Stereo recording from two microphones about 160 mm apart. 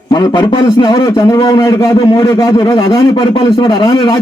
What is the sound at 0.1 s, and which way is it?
A man's voice, 25° left (ahead or behind).